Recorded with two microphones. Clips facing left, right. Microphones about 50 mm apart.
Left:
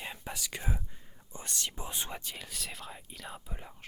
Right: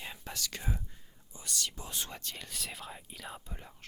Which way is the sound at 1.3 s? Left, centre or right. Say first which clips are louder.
Left 1 dB; left.